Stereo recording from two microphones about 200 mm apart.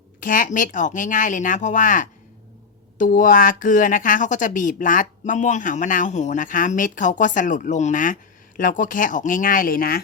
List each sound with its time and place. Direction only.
0.2 s speech: 40° left (ahead or behind)